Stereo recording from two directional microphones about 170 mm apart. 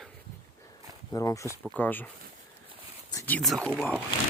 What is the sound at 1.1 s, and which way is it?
Speech, 20° left (ahead or behind).